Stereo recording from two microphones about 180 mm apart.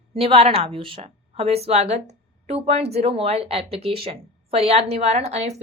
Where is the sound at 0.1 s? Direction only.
30° right (ahead or behind).